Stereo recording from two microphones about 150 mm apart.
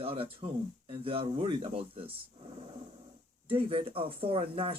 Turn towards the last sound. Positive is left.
turn(degrees=-40)  # may be behind; listen again after turning